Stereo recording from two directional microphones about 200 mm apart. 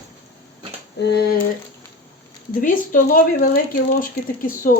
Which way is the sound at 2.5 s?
45° left (ahead or behind).